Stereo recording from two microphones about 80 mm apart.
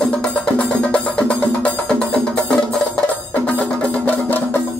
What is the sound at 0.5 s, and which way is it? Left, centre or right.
Music, centre.